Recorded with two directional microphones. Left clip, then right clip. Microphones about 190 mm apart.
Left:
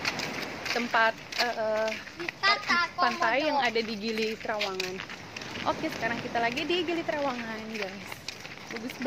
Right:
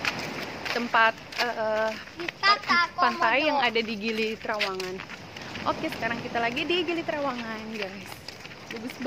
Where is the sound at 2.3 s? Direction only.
30° right (ahead or behind).